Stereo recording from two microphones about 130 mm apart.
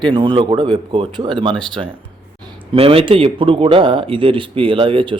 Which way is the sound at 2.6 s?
45° right (ahead or behind).